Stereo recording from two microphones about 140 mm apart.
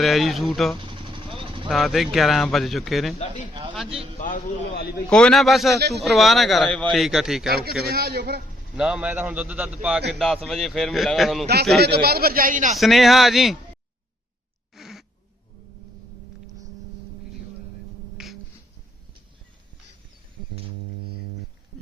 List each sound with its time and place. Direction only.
0.0 s speech: centre (ahead or behind)
0.9 s vehicle: 35° right (ahead or behind)
1.6 s speech: centre (ahead or behind)
3.8 s speech: 40° right (ahead or behind)
4.2 s a man's voice: 80° left
5.1 s speech: 5° left (ahead or behind)
7.5 s a man's voice: 90° right
8.7 s a man's voice: 5° right (ahead or behind)
12.0 s a man's voice: 90° right; by 12.7 s 70° right (ahead or behind)
12.7 s speech: centre (ahead or behind)
14.8 s cat: centre (ahead or behind)
18.2 s a sound: 5° right (ahead or behind)